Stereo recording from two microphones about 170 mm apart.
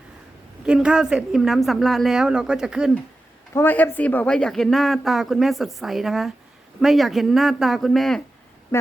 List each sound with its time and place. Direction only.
0.6 s speech: 5° right (ahead or behind)
3.5 s speech: 10° left (ahead or behind)